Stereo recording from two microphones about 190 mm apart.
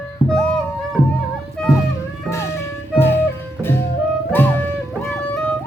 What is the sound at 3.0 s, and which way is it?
Music, 10° left (ahead or behind).